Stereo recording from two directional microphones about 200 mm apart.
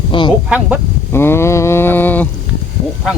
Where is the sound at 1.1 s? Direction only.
10° left (ahead or behind).